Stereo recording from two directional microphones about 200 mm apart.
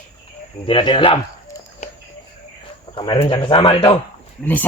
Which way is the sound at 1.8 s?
35° left (ahead or behind).